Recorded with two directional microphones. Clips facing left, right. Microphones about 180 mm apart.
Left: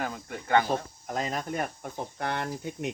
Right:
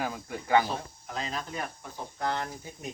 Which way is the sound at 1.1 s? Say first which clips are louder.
Left 4 dB; 50° left (ahead or behind).